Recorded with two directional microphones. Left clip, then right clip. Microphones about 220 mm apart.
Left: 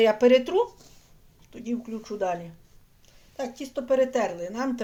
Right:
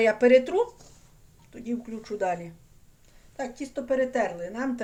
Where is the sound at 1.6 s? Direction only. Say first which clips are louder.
Left 1 dB; 10° left (ahead or behind).